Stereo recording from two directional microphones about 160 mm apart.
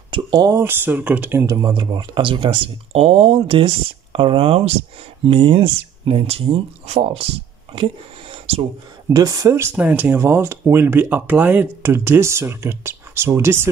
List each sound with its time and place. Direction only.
0.1 s speech: 25° right (ahead or behind)
1.7 s speech: 30° right (ahead or behind)
9.1 s speech: 25° right (ahead or behind)